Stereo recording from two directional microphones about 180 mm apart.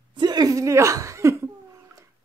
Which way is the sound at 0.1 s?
25° right (ahead or behind).